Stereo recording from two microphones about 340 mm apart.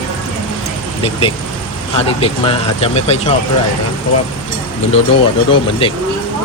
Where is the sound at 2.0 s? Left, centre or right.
Centre.